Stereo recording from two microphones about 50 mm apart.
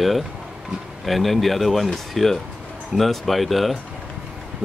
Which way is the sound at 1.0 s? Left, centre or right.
Centre.